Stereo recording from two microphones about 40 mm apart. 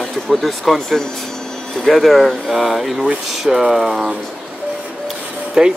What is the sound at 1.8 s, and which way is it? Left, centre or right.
Speech, centre.